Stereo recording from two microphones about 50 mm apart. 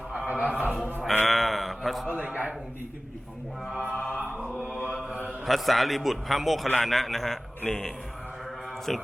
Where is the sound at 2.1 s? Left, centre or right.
Right.